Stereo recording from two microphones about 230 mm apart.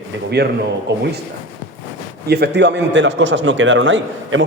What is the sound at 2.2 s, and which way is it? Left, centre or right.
A man's voice, right.